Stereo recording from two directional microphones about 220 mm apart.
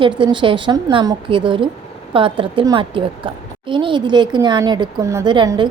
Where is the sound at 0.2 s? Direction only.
20° right (ahead or behind).